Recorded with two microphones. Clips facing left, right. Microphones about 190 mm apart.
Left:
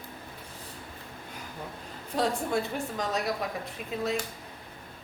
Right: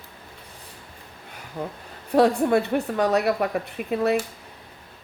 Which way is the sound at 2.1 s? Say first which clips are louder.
Right 10 dB; 60° right (ahead or behind).